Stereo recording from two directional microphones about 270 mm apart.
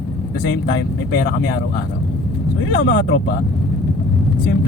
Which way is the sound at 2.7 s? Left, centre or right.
Left.